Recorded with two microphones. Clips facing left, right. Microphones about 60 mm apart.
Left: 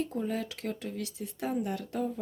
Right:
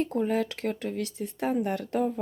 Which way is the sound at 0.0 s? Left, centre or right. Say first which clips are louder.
Right 6 dB; right.